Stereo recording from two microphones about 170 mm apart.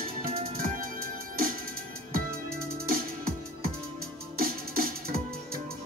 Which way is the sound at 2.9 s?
60° right (ahead or behind).